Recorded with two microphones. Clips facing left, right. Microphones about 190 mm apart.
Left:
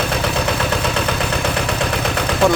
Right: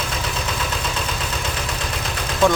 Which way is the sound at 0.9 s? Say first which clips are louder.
Left 7 dB; 65° left (ahead or behind).